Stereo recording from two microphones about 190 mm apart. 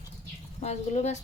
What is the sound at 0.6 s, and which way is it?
Speech, 35° left (ahead or behind).